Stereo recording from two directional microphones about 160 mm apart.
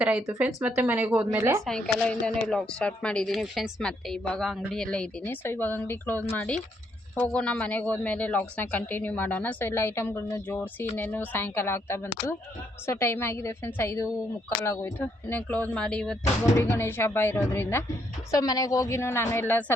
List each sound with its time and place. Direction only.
0.3 s speech: 10° right (ahead or behind)
1.6 s speech: 5° left (ahead or behind)
16.6 s speech: 15° left (ahead or behind)